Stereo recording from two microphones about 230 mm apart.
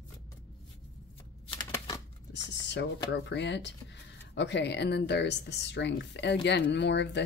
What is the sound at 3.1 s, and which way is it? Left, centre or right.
Speech, left.